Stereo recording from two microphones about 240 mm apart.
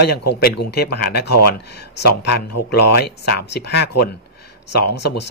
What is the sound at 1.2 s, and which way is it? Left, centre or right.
Speech, left.